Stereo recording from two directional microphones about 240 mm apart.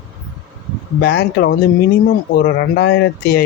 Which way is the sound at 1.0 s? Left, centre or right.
Left.